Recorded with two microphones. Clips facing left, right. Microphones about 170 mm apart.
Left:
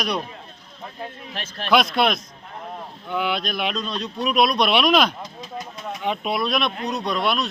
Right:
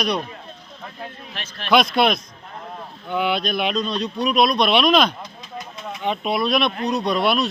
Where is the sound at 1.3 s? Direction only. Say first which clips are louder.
Left 4 dB; 45° left (ahead or behind).